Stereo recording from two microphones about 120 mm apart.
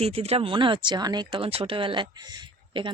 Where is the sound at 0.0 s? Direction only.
60° right (ahead or behind).